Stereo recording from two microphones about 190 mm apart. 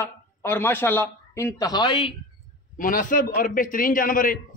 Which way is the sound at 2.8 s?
45° left (ahead or behind).